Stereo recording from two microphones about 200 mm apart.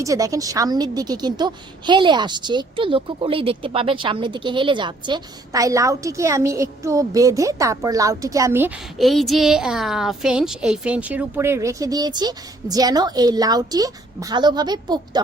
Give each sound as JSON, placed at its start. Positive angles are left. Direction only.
{"t": 0.0, "sound": "a woman's voice", "side_deg": -15}